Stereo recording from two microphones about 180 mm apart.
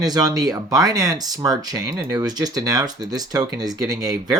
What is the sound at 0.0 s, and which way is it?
Speech, 20° right (ahead or behind).